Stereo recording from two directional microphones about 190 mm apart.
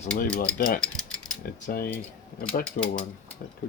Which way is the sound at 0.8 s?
5° left (ahead or behind).